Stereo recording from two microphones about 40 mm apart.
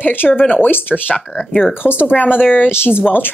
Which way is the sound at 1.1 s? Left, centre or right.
Left.